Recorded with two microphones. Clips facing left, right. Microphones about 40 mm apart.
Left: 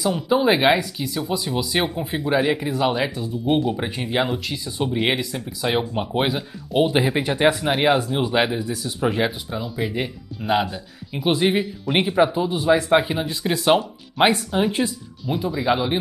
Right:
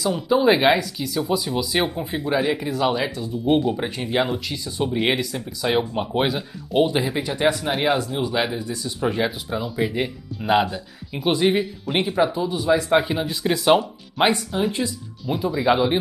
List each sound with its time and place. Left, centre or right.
0.0 s speech: centre
6.9 s speech: left
7.7 s speech: centre
8.0 s speech: left
9.5 s speech: centre
11.8 s speech: centre
12.9 s speech: centre